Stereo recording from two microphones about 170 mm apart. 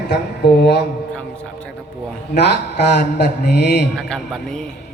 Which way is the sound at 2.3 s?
75° left (ahead or behind).